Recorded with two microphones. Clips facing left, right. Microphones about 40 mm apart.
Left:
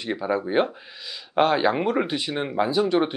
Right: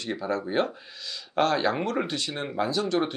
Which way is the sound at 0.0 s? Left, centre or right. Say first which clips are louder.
Left 4 dB; centre.